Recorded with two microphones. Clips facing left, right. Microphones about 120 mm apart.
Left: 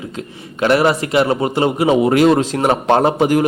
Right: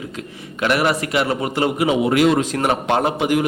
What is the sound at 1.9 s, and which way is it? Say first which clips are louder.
A man's voice: left 5 dB; 35° left (ahead or behind).